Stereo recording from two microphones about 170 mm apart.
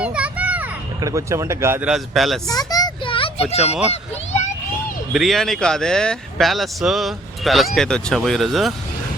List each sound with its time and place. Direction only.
0.0 s children playing: 5° right (ahead or behind)
1.0 s speech: 20° right (ahead or behind)
1.9 s speech: centre (ahead or behind)
2.5 s a sound: 20° left (ahead or behind)
5.1 s speech: centre (ahead or behind)